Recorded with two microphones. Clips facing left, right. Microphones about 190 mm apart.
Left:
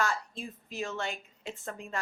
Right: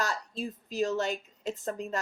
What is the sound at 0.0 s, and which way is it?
A woman's voice, 40° right (ahead or behind).